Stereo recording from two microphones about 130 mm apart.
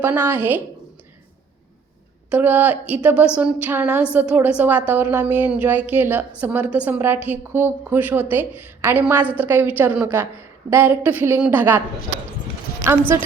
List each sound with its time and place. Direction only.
0.0 s a woman's voice: 15° right (ahead or behind)
2.3 s a woman's voice: 15° right (ahead or behind)
12.8 s a woman's voice: 20° right (ahead or behind)